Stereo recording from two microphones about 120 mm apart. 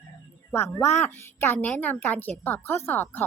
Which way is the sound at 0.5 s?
20° left (ahead or behind).